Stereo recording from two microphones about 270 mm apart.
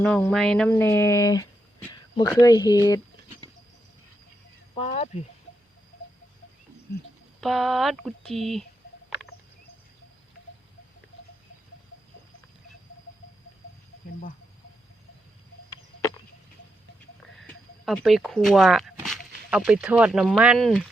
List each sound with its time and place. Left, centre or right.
0.0 s speech: centre
4.8 s speech: left
7.4 s speech: centre
17.4 s speech: centre